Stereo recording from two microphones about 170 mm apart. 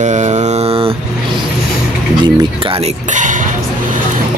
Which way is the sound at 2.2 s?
30° right (ahead or behind).